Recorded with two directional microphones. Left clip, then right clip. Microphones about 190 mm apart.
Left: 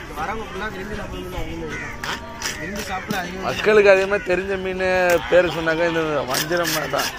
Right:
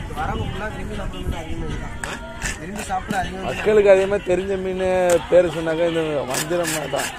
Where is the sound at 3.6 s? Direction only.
15° right (ahead or behind).